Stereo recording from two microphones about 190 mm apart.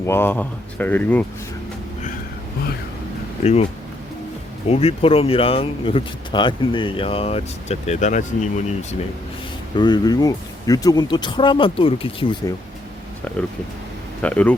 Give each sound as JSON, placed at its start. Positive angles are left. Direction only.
{"t": 0.0, "sound": "speech", "side_deg": 10}
{"t": 3.4, "sound": "speech", "side_deg": 35}
{"t": 4.7, "sound": "speech", "side_deg": 30}
{"t": 9.7, "sound": "speech", "side_deg": 25}
{"t": 14.2, "sound": "speech", "side_deg": 5}